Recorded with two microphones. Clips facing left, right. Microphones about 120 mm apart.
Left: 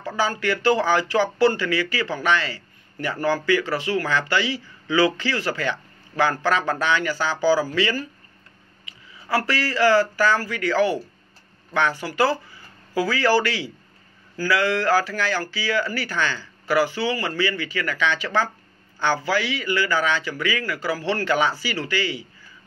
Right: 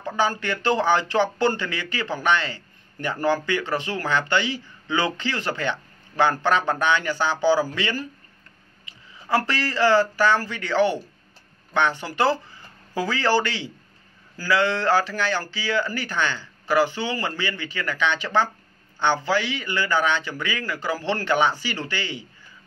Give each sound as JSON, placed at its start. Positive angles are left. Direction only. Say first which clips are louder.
{"t": 0.0, "sound": "speech", "louder": "even", "side_deg": -20}
{"t": 9.3, "sound": "speech", "louder": "even", "side_deg": -20}